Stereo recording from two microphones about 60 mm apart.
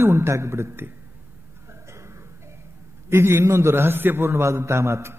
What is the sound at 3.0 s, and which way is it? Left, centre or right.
A man's voice, right.